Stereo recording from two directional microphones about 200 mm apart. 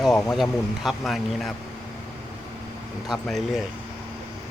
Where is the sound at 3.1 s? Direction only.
Centre (ahead or behind).